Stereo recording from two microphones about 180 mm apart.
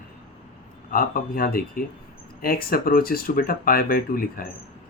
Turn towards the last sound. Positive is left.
turn(degrees=55)  # may be behind; listen again after turning